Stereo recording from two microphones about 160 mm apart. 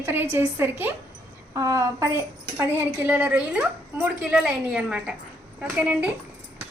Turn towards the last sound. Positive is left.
turn(degrees=-5)  # may be behind; listen again after turning